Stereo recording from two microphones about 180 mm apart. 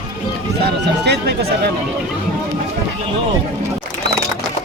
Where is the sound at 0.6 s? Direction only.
65° right (ahead or behind).